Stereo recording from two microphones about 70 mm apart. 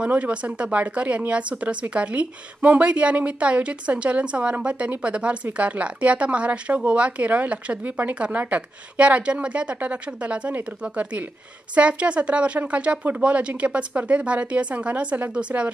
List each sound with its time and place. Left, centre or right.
0.0 s speech: centre